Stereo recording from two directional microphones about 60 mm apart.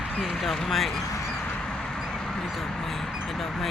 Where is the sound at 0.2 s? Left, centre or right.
Centre.